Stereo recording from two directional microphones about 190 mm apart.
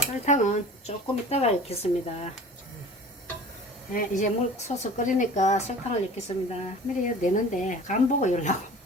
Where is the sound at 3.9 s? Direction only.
45° left (ahead or behind).